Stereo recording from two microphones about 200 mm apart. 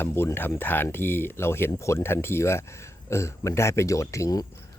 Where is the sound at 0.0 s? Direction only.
10° left (ahead or behind).